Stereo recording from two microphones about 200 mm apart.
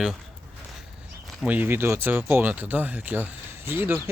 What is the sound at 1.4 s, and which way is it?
Speech, 10° right (ahead or behind).